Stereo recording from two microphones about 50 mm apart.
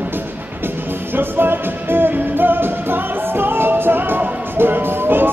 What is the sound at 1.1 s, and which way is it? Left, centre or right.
Music, right.